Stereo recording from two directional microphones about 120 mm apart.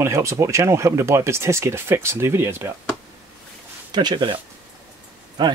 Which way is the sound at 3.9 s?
35° right (ahead or behind).